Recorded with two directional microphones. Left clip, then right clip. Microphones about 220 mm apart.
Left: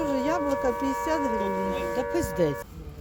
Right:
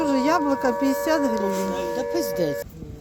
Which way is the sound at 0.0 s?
5° right (ahead or behind).